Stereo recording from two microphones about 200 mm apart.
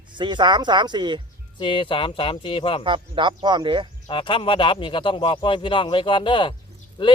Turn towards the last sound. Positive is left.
turn(degrees=25)  # may be behind; listen again after turning